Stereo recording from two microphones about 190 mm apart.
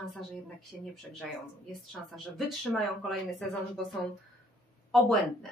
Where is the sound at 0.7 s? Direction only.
5° left (ahead or behind).